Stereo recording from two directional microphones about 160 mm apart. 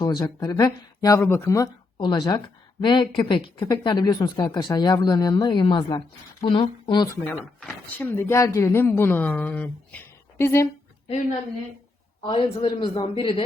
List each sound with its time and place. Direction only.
0.0 s speech: 25° left (ahead or behind)
7.3 s speech: 15° left (ahead or behind)
12.2 s a woman's voice: 35° left (ahead or behind)